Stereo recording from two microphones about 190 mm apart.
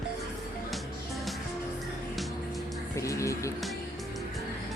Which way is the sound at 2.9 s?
15° left (ahead or behind).